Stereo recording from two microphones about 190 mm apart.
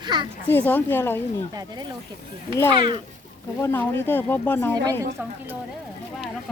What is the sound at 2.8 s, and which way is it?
Speech, 25° right (ahead or behind).